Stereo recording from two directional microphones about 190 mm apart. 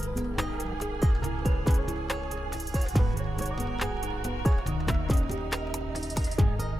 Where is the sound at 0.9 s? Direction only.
Centre (ahead or behind).